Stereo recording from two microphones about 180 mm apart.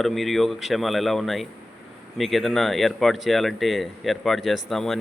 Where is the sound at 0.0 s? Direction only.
Centre (ahead or behind).